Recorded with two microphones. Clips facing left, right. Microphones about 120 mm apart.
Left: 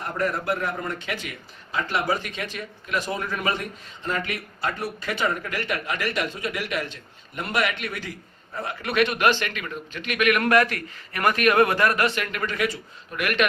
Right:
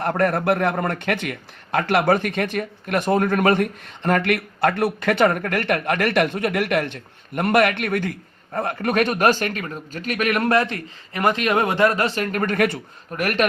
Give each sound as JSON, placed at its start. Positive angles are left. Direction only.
{"t": 0.0, "sound": "a man's voice", "side_deg": -60}
{"t": 13.1, "sound": "a man's voice", "side_deg": -40}